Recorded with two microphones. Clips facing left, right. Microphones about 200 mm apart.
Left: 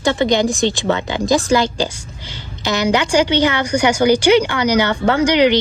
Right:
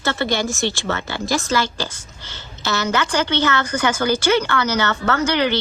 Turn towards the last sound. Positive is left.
turn(degrees=15)  # may be behind; listen again after turning